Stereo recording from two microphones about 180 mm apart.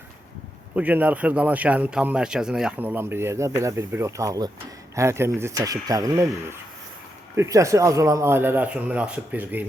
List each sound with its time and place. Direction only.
0.8 s speech: 10° right (ahead or behind)